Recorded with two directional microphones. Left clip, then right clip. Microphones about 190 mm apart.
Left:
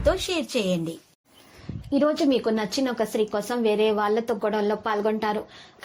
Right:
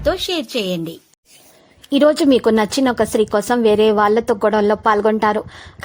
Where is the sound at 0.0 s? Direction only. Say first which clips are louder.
Right 5 dB; 30° right (ahead or behind).